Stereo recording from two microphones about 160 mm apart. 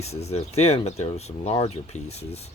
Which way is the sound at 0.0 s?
40° left (ahead or behind).